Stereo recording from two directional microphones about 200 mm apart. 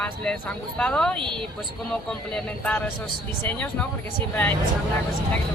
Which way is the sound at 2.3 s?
5° left (ahead or behind).